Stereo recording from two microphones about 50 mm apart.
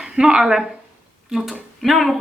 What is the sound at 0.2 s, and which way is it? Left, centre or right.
Speech, centre.